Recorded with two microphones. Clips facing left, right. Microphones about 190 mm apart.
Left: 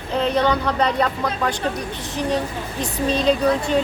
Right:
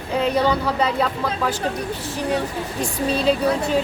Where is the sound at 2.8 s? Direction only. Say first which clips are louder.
Left 1 dB; 10° right (ahead or behind).